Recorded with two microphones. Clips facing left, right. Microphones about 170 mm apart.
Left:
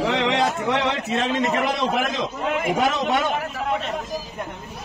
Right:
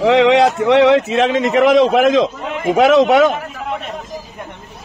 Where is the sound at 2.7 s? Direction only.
90° right.